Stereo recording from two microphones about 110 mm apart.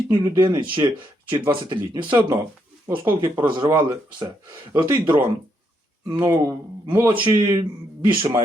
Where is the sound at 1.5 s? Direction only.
40° right (ahead or behind).